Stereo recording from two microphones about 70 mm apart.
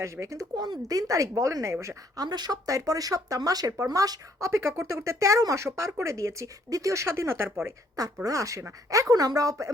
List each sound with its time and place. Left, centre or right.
0.0 s speech: right
0.5 s speech: right
2.1 s speech: right
2.6 s speech: right
4.4 s speech: right
7.9 s speech: right